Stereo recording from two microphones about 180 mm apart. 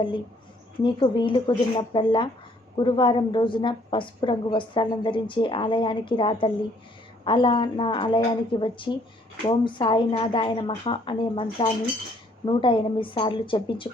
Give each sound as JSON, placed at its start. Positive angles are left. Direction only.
{"t": 0.8, "sound": "a woman's voice", "side_deg": 25}